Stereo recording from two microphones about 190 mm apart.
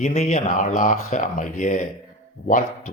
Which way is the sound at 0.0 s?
35° left (ahead or behind).